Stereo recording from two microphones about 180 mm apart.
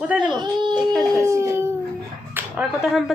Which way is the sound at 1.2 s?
15° right (ahead or behind).